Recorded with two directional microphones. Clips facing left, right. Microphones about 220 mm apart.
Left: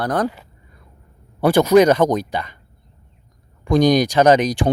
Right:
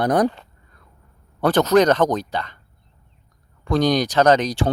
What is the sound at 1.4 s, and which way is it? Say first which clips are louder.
Speech: left 3 dB; 10° left (ahead or behind).